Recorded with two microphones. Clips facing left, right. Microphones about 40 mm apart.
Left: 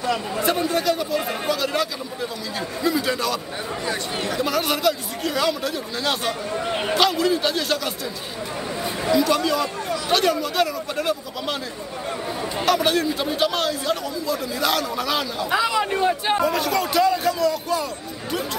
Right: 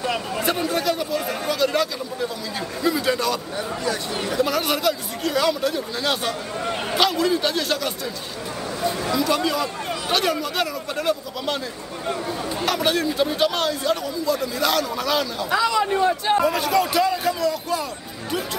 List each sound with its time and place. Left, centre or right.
0.0 s speech: centre
0.4 s speech: centre
9.1 s speech: centre
12.6 s speech: centre
15.5 s speech: centre
16.3 s speech: centre